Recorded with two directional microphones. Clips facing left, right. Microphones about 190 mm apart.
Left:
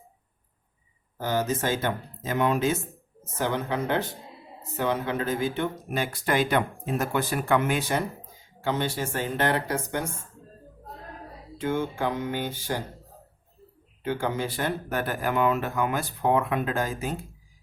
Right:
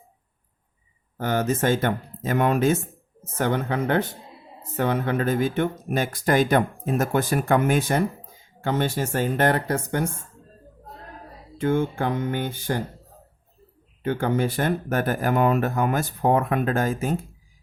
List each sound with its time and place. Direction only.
1.2 s speech: 55° right (ahead or behind)
11.5 s speech: 55° right (ahead or behind)
14.0 s speech: 55° right (ahead or behind)